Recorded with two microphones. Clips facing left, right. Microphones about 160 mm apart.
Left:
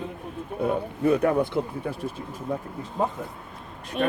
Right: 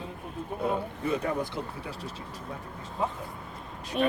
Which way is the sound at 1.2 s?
55° left (ahead or behind).